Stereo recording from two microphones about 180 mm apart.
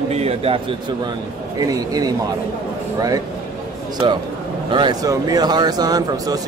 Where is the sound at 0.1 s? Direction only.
35° right (ahead or behind).